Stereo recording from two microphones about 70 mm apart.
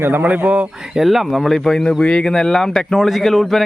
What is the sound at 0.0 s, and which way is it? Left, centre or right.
Speech, right.